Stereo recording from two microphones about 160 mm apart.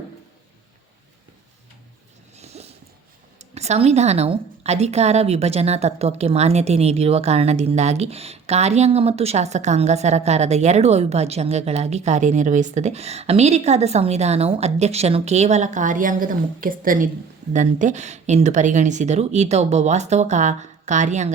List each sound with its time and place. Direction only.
2.3 s dog: 40° right (ahead or behind)
3.3 s speech: 45° right (ahead or behind)